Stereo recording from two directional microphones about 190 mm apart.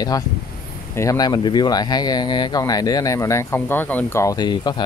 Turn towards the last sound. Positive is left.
turn(degrees=25)  # may be behind; listen again after turning